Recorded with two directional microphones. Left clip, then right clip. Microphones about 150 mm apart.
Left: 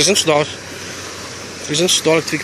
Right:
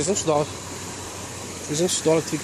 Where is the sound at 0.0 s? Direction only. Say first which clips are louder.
Left 10 dB; 10° left (ahead or behind).